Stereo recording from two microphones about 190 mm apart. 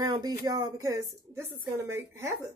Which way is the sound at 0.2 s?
20° right (ahead or behind).